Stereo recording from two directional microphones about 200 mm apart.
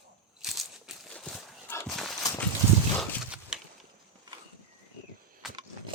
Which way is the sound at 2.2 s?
15° left (ahead or behind).